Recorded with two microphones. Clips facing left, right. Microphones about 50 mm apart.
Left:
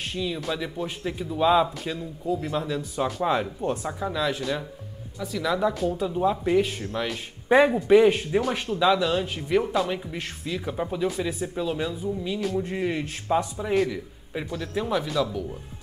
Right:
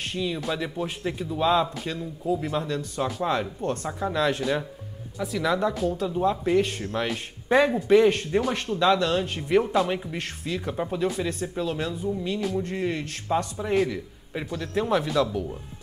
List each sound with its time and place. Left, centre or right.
0.0 s a man's voice: centre
7.4 s a man's voice: centre